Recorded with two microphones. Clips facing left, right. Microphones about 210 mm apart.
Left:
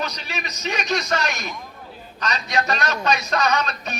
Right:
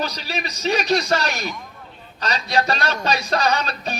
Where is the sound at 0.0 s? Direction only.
35° right (ahead or behind).